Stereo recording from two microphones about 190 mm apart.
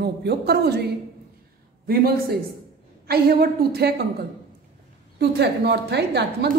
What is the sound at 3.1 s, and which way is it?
Music, 55° right (ahead or behind).